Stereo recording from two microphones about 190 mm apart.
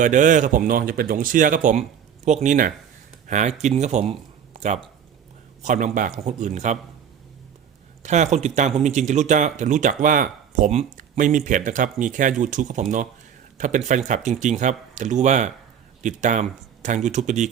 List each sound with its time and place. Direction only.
0.0 s speech: 40° right (ahead or behind)
4.5 s a sound: 35° right (ahead or behind)
5.6 s speech: 40° right (ahead or behind)
8.0 s speech: 40° right (ahead or behind)